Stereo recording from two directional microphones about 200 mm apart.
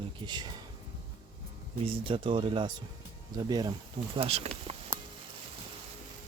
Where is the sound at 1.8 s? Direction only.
25° right (ahead or behind).